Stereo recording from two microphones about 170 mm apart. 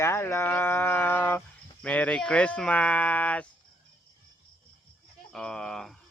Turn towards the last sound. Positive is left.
turn(degrees=5)  # may be behind; listen again after turning